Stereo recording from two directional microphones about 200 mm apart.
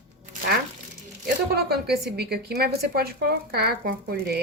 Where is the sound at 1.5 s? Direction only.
55° right (ahead or behind).